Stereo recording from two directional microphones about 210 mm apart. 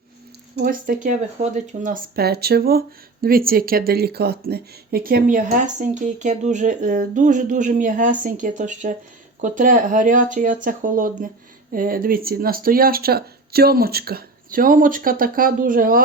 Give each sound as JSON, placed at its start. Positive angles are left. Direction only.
{"t": 0.5, "sound": "speech", "side_deg": -45}